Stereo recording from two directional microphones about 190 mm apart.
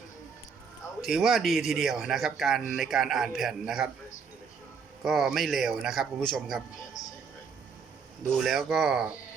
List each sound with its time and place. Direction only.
1.0 s a man's voice: centre (ahead or behind)
5.0 s a man's voice: centre (ahead or behind)
6.7 s a sound: 20° left (ahead or behind)
8.4 s a man's voice: centre (ahead or behind)